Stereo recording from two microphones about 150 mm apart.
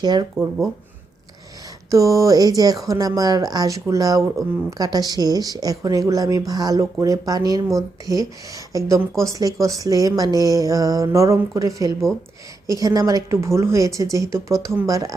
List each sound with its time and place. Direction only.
0.0 s speech: 30° right (ahead or behind)
1.9 s speech: 20° right (ahead or behind)